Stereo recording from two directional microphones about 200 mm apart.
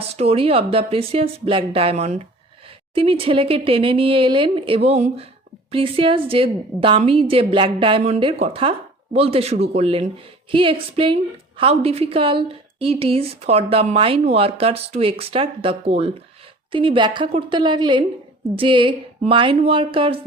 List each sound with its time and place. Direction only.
0.2 s a woman's voice: 30° right (ahead or behind)